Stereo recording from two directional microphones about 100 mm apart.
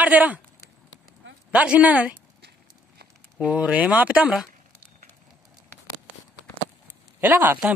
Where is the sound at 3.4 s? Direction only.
10° right (ahead or behind).